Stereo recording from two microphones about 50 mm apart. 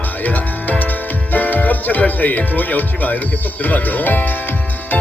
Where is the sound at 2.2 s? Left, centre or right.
Left.